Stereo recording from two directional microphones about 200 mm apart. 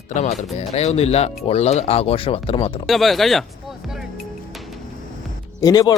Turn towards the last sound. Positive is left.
turn(degrees=20)  # may be behind; listen again after turning